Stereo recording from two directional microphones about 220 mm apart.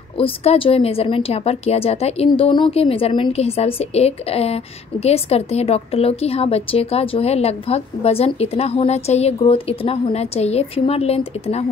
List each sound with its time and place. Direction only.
0.2 s a woman's voice: 25° left (ahead or behind)